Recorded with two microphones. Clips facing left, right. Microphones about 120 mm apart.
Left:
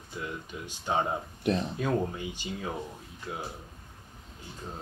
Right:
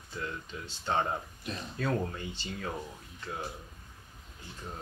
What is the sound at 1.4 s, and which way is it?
Speech, 65° left (ahead or behind).